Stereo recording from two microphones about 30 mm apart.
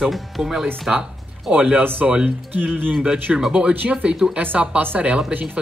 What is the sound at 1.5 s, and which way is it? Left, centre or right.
Speech, right.